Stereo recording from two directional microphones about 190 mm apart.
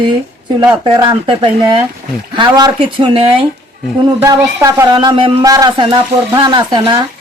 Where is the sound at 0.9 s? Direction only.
25° right (ahead or behind).